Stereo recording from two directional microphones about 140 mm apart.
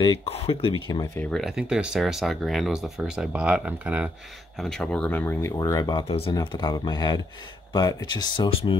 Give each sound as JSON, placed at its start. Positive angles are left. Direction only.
{"t": 0.0, "sound": "speech", "side_deg": 40}
{"t": 1.3, "sound": "speech", "side_deg": -5}
{"t": 4.6, "sound": "speech", "side_deg": 5}
{"t": 5.6, "sound": "speech", "side_deg": 25}
{"t": 6.0, "sound": "speech", "side_deg": 45}
{"t": 6.3, "sound": "speech", "side_deg": 30}